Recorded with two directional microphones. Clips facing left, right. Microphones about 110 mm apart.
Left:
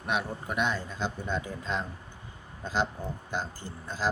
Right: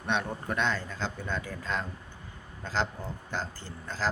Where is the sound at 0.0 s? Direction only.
10° left (ahead or behind).